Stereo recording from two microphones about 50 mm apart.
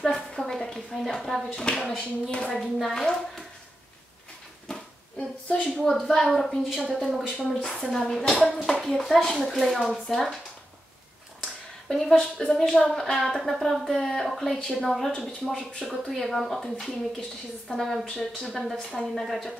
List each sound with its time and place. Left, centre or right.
0.0 s speech: centre
1.5 s speech: centre
2.3 s speech: left
2.6 s speech: centre
4.6 s a sound: centre
5.8 s a woman's voice: centre
11.4 s a sound: centre
12.5 s speech: centre
16.1 s a woman's voice: centre